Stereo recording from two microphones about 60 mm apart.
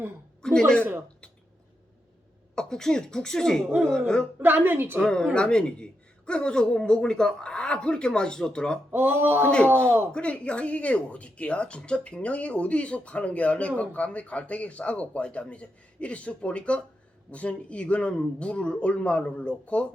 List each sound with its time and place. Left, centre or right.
0.4 s a sound: centre
2.6 s a woman's voice: centre
4.4 s a woman's voice: right
4.9 s a woman's voice: centre
8.9 s a woman's voice: right
10.1 s speech: centre